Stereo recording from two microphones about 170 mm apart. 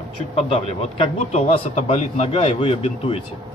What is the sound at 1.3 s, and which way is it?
A man's voice, 40° left (ahead or behind).